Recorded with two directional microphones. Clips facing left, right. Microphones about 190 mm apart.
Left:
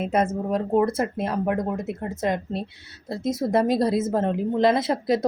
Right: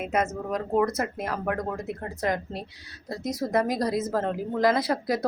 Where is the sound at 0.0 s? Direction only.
30° left (ahead or behind).